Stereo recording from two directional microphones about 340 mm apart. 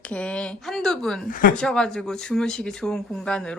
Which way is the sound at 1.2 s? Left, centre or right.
Left.